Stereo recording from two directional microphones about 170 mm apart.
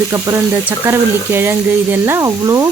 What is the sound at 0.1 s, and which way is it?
A woman's voice, 15° right (ahead or behind).